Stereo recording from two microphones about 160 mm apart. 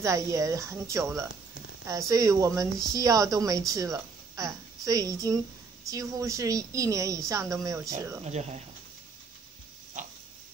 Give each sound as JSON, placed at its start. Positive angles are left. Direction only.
{"t": 0.0, "sound": "speech", "side_deg": -20}
{"t": 8.2, "sound": "speech", "side_deg": -45}